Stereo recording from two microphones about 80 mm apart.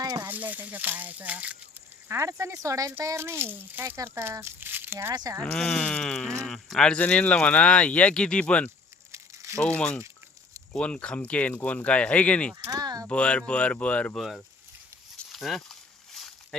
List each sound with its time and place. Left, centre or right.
0.0 s speech: right
0.3 s speech: right
2.0 s speech: right
3.2 s speech: right
5.5 s speech: centre
9.1 s crumpling: right
9.6 s speech: centre
12.7 s speech: right
13.1 s speech: centre
14.2 s speech: centre
15.3 s snake: centre